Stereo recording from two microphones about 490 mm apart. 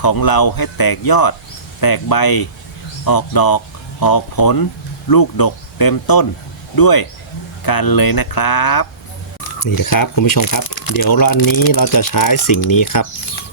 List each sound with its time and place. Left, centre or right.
0.0 s speech: left